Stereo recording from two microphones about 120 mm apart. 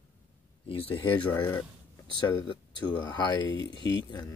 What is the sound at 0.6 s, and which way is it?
Speech, 50° left (ahead or behind).